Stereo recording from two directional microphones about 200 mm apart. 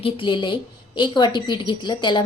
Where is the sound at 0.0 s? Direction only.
25° left (ahead or behind).